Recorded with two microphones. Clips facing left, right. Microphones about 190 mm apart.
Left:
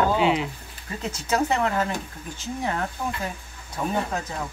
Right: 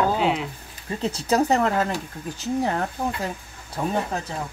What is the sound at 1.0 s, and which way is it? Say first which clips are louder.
Speech: right 3 dB; 35° right (ahead or behind).